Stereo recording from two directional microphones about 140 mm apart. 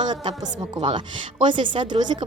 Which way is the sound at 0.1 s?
30° right (ahead or behind).